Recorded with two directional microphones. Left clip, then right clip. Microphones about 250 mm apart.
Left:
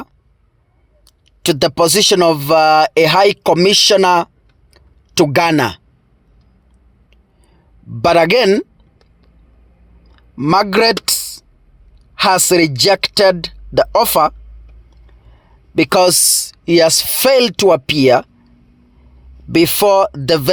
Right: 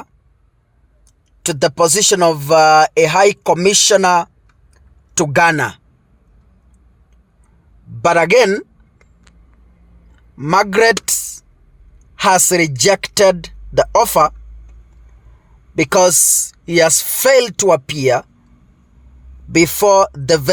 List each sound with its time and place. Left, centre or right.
1.0 s speech: left
4.7 s tick-tock: left
8.0 s speech: left
10.2 s speech: left
15.7 s speech: left
19.5 s speech: left